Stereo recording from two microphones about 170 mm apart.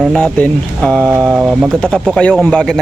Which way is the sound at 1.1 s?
10° right (ahead or behind).